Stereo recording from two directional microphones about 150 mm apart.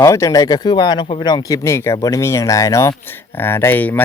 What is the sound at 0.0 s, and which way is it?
Speech, 20° left (ahead or behind).